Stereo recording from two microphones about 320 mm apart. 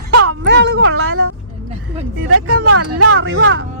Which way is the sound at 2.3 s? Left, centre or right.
Right.